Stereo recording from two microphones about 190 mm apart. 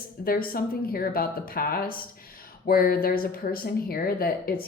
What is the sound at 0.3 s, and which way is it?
Speech, 50° left (ahead or behind).